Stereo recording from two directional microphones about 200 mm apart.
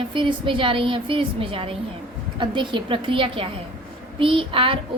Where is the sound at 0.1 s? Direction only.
25° right (ahead or behind).